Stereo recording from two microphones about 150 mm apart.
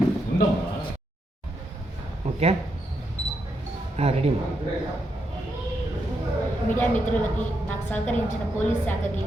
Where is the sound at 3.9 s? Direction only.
45° right (ahead or behind).